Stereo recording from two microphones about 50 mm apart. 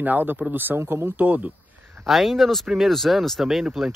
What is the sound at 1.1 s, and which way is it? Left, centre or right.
Speech, right.